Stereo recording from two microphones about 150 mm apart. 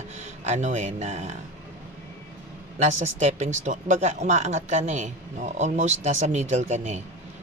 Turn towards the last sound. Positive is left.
turn(degrees=-50)  # may be behind; listen again after turning